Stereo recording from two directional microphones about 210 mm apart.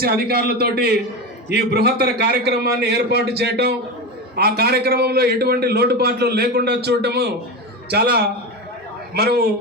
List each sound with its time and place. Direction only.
0.0 s a man's voice: 45° right (ahead or behind)